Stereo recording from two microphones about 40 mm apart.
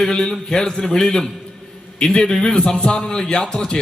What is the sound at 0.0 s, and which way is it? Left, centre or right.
A man's voice, centre.